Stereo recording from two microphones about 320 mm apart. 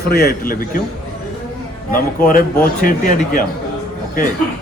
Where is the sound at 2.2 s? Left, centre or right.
Left.